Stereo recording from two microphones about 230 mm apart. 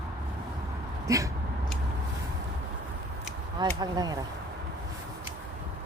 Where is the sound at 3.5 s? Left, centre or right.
Centre.